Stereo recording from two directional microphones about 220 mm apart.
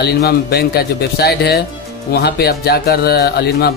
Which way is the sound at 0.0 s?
45° left (ahead or behind).